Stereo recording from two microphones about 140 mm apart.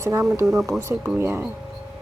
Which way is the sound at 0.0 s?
20° right (ahead or behind).